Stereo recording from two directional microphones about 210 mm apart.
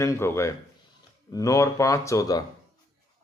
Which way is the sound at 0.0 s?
15° left (ahead or behind).